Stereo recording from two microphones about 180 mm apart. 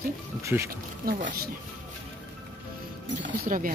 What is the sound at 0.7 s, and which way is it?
Speech, 50° right (ahead or behind).